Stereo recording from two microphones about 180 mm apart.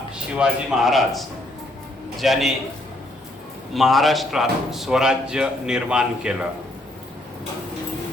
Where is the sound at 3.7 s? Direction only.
Centre (ahead or behind).